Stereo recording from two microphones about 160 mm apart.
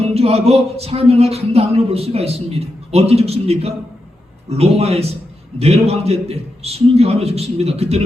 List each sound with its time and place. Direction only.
0.0 s speech: 40° right (ahead or behind)